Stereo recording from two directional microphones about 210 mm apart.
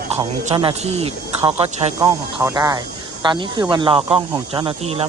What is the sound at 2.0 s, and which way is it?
Speech, 15° right (ahead or behind).